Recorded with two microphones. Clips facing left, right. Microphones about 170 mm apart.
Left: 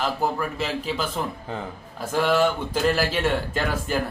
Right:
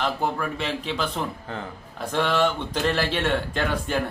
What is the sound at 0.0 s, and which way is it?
Speech, 5° left (ahead or behind).